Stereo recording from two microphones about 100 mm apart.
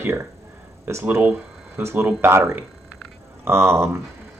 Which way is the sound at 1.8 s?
25° right (ahead or behind).